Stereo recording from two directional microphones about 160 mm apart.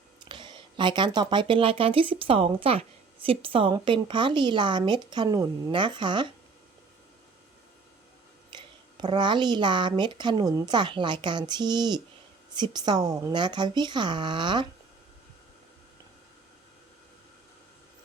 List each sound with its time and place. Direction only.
0.2 s speech: 30° right (ahead or behind)
8.5 s speech: 30° right (ahead or behind)